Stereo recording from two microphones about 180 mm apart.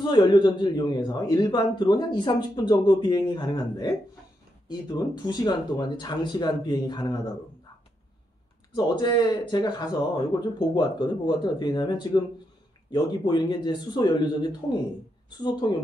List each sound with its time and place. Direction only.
0.0 s a man's voice: 25° left (ahead or behind)
8.7 s a man's voice: 25° left (ahead or behind)